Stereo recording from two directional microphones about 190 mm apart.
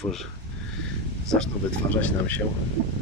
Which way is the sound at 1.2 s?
5° left (ahead or behind).